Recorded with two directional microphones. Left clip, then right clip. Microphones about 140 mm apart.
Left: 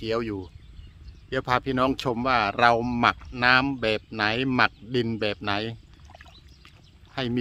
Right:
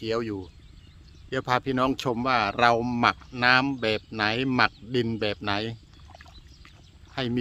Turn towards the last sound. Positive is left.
turn(degrees=10)  # may be behind; listen again after turning